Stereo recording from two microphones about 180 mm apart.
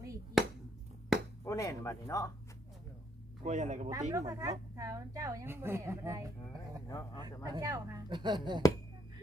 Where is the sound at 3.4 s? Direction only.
40° right (ahead or behind).